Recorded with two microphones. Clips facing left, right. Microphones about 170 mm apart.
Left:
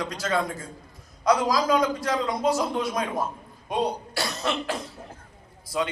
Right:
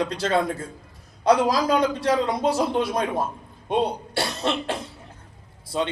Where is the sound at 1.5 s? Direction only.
30° right (ahead or behind).